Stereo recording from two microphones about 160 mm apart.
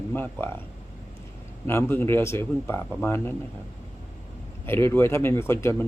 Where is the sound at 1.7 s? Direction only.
15° left (ahead or behind).